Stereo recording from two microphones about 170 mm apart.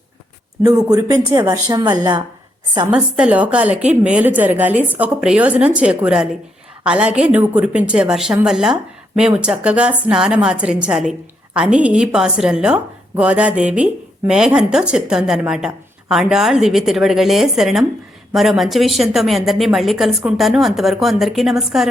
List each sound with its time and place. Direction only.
0.6 s speech: 20° right (ahead or behind)
2.9 s a woman's voice: 5° right (ahead or behind)